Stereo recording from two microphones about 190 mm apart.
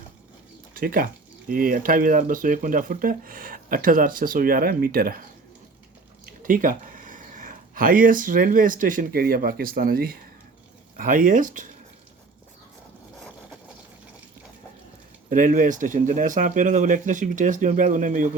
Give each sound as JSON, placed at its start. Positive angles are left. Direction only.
{"t": 0.7, "sound": "speech", "side_deg": -45}
{"t": 6.2, "sound": "speech", "side_deg": -45}
{"t": 15.3, "sound": "speech", "side_deg": -45}